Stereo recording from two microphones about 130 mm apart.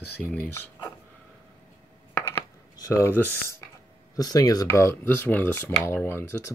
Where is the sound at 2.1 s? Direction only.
25° left (ahead or behind).